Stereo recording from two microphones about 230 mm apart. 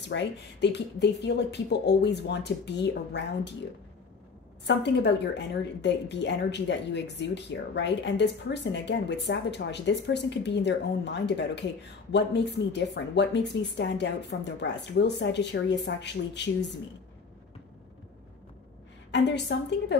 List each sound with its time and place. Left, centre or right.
0.1 s speech: left
4.6 s speech: left
19.1 s speech: left